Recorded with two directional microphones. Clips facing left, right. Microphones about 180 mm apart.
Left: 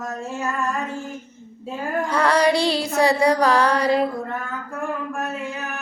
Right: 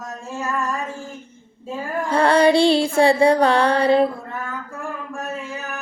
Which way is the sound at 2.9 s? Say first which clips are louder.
Even; 30° right (ahead or behind).